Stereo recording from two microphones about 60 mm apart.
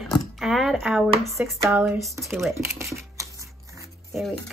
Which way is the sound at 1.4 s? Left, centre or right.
Right.